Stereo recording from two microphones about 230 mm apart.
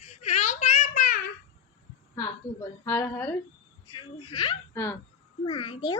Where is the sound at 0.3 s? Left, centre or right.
Left.